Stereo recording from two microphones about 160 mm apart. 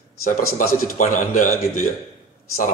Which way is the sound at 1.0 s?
55° left (ahead or behind).